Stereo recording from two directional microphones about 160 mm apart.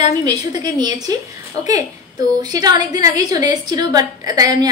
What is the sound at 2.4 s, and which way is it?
A woman's voice, 25° right (ahead or behind).